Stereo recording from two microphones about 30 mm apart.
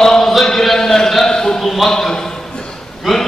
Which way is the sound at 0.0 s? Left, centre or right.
Centre.